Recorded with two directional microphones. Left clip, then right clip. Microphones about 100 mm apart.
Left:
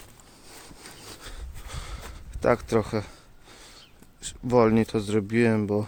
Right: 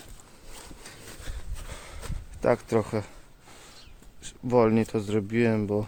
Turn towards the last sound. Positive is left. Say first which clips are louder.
# left 2 dB
turn(degrees=25)  # may be behind; listen again after turning